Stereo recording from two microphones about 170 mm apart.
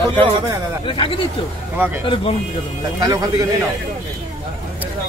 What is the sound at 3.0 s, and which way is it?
Speech, 20° right (ahead or behind).